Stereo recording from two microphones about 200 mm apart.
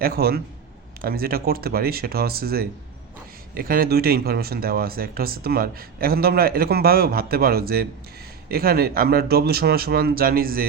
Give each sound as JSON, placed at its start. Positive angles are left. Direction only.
{"t": 0.0, "sound": "speech", "side_deg": -50}